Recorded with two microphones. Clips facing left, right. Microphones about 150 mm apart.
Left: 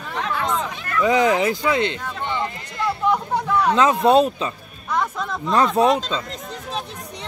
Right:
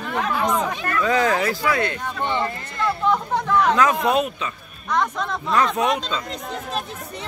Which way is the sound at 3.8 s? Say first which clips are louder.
Left 4 dB; 25° left (ahead or behind).